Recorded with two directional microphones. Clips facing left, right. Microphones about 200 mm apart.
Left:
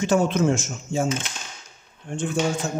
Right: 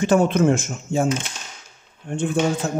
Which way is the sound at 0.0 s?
55° right (ahead or behind).